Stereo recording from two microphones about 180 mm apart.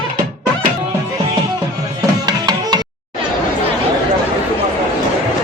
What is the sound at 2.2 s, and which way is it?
Tabla, 25° right (ahead or behind).